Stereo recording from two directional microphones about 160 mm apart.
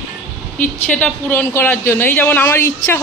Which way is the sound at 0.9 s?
15° left (ahead or behind).